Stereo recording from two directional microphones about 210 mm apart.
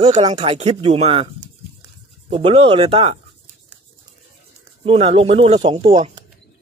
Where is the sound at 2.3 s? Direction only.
25° right (ahead or behind).